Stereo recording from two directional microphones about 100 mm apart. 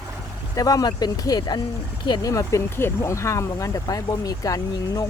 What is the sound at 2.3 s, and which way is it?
Speech, 25° left (ahead or behind).